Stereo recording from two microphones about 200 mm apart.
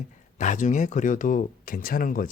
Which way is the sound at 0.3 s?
40° left (ahead or behind).